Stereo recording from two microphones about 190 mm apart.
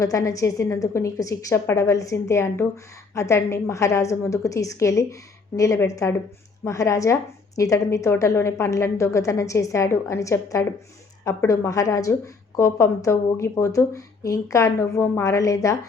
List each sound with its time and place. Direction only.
0.0 s a woman's voice: 15° left (ahead or behind)